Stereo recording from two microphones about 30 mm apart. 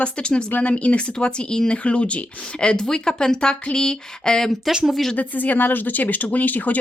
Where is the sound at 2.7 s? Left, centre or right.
Left.